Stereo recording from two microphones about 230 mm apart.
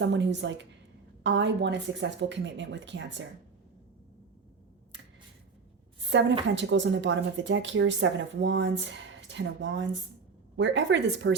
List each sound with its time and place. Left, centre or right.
0.0 s speech: right
6.1 s a woman's voice: right